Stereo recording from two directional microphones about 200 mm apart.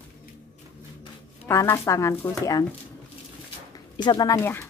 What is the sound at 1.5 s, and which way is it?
Speech, 15° left (ahead or behind).